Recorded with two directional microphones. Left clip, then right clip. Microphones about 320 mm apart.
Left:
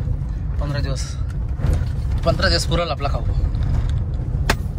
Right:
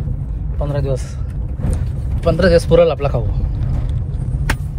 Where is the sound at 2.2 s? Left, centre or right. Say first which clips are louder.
Right 6 dB; centre.